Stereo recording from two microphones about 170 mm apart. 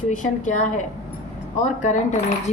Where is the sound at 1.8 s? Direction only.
45° left (ahead or behind).